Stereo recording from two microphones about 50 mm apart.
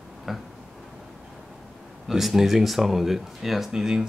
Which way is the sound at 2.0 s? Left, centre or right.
Centre.